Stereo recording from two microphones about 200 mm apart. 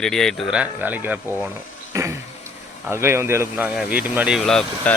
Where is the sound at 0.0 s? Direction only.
Centre (ahead or behind).